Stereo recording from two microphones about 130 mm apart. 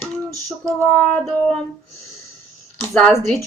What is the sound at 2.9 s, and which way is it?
Speech, 5° left (ahead or behind).